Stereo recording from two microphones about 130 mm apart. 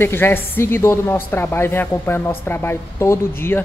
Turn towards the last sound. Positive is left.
turn(degrees=15)  # may be behind; listen again after turning